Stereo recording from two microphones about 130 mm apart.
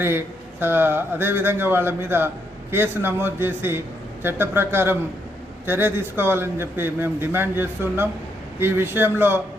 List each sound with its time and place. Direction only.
0.0 s a man's voice: 15° right (ahead or behind)